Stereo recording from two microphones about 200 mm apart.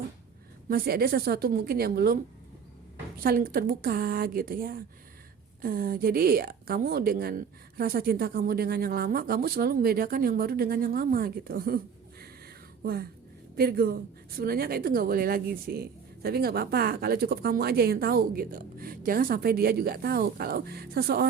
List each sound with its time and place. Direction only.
0.7 s a woman's voice: 50° right (ahead or behind)
3.2 s a woman's voice: 45° right (ahead or behind)
12.8 s a woman's voice: 50° right (ahead or behind)